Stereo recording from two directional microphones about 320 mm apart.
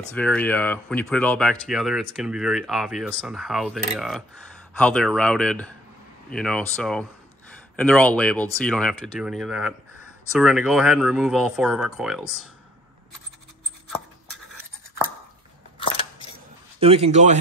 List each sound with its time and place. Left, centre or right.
0.1 s speech: centre
16.8 s speech: centre